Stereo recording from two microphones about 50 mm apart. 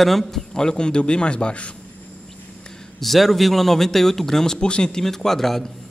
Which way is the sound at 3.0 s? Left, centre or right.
Centre.